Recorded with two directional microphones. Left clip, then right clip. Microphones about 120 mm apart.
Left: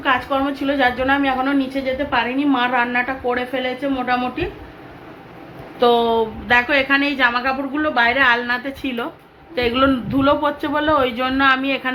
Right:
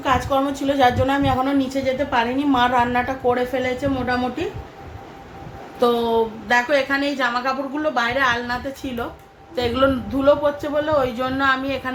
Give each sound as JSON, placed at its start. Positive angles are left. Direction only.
{"t": 0.0, "sound": "a woman's voice", "side_deg": -25}
{"t": 5.8, "sound": "speech", "side_deg": 0}
{"t": 6.5, "sound": "a woman's voice", "side_deg": 25}
{"t": 10.2, "sound": "a man's voice", "side_deg": 40}
{"t": 11.3, "sound": "a woman's voice", "side_deg": 25}